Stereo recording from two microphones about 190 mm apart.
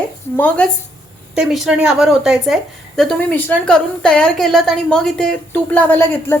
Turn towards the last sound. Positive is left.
turn(degrees=10)  # may be behind; listen again after turning